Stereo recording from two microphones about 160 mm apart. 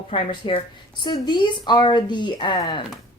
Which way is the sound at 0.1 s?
35° left (ahead or behind).